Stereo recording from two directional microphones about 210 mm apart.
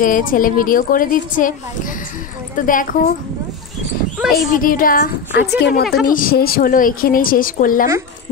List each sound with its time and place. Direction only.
0.0 s a woman's voice: 40° left (ahead or behind)
4.2 s speech: centre (ahead or behind)
4.6 s a woman's voice: 40° left (ahead or behind)
6.0 s a woman's voice: 40° left (ahead or behind)